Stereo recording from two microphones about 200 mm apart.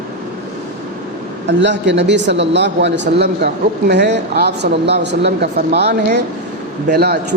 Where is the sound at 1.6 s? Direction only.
60° right (ahead or behind).